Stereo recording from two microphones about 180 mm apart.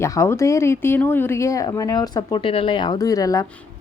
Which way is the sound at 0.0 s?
15° left (ahead or behind).